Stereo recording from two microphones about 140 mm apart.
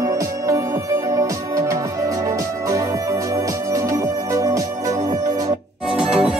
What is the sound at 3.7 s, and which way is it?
Music, 25° right (ahead or behind).